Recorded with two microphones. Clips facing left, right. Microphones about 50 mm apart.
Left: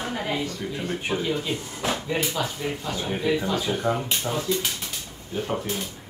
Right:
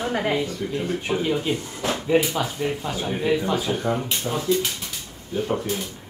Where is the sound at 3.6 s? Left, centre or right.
Centre.